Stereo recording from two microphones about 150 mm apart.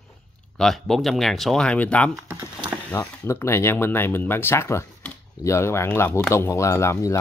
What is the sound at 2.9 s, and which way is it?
Speech, 20° left (ahead or behind).